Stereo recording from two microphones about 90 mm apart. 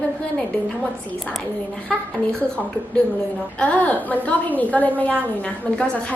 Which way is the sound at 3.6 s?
15° left (ahead or behind).